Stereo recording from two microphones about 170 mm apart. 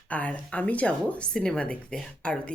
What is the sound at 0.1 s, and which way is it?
A woman's voice, 10° left (ahead or behind).